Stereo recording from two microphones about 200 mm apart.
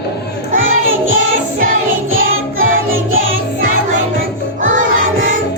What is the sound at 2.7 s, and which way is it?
Music, 80° right.